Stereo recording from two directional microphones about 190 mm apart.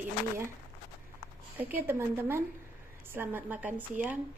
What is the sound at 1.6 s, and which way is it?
A woman's voice, 10° right (ahead or behind).